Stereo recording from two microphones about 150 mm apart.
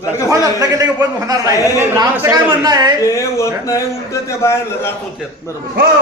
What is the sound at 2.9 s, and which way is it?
A man's voice, 20° left (ahead or behind).